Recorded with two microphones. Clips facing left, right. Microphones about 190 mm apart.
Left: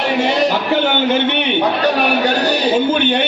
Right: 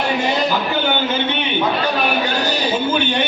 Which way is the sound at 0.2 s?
70° left (ahead or behind).